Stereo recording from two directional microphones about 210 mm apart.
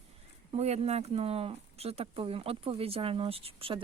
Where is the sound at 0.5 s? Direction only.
30° right (ahead or behind).